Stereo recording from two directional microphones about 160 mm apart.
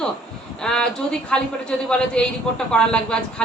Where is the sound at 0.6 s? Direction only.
5° left (ahead or behind).